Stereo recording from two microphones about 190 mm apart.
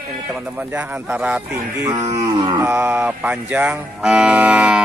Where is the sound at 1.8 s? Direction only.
20° right (ahead or behind).